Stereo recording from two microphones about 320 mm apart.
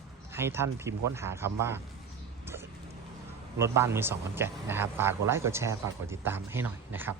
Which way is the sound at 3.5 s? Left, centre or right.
Centre.